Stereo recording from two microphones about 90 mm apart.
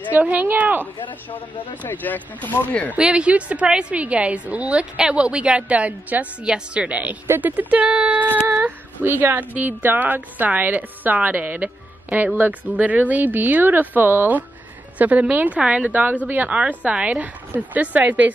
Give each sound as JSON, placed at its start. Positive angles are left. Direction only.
{"t": 0.1, "sound": "speech", "side_deg": -20}
{"t": 1.8, "sound": "speech", "side_deg": 20}
{"t": 3.0, "sound": "a woman's voice", "side_deg": -10}